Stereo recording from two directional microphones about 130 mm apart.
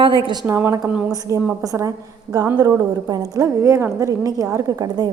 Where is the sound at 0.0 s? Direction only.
40° right (ahead or behind).